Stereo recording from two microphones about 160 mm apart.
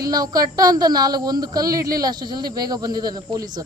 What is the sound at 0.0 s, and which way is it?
Speech, 25° right (ahead or behind).